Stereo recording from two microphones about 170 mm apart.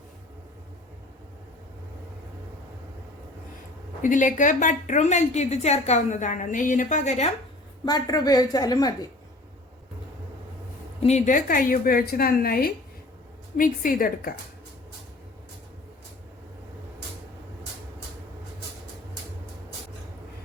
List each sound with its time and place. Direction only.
4.0 s a woman's voice: 50° left (ahead or behind)
7.9 s a woman's voice: 25° left (ahead or behind)
11.0 s a woman's voice: 45° left (ahead or behind)